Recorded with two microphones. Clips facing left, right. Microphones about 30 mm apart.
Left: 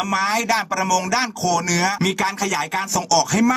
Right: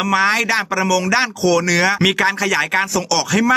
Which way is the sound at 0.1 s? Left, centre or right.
Right.